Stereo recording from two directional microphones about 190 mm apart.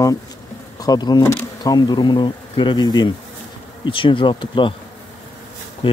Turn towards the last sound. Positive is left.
turn(degrees=30)  # may be behind; listen again after turning